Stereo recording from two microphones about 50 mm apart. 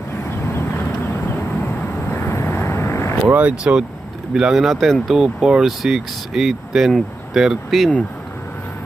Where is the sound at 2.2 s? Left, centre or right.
Left.